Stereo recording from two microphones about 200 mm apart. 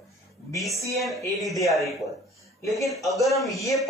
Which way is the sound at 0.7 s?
15° right (ahead or behind).